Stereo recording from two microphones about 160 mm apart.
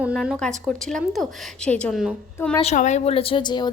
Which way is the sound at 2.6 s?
45° left (ahead or behind).